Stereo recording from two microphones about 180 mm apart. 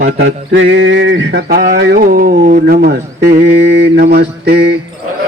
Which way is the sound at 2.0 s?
50° right (ahead or behind).